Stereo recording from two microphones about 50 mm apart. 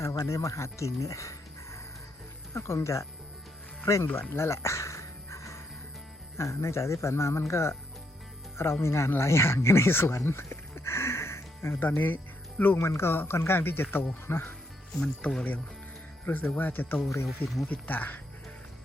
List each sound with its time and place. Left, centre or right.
0.0 s speech: left
2.5 s speech: left
4.4 s music: left
6.3 s speech: left
10.1 s music: left
11.8 s speech: left
12.7 s speech: left
13.1 s speech: left
15.2 s speech: left
16.2 s speech: left
17.2 s speech: centre
17.7 s speech: left